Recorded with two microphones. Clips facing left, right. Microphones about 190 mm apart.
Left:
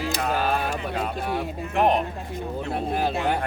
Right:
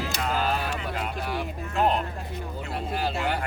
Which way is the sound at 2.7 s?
55° left (ahead or behind).